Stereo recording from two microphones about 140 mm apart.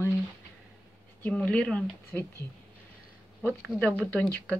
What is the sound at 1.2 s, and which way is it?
Speech, 5° left (ahead or behind).